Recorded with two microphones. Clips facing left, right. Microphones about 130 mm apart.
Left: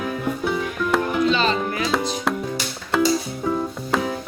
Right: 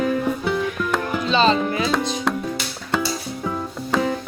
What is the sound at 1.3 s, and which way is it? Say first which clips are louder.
Music: right 4 dB; 25° right (ahead or behind).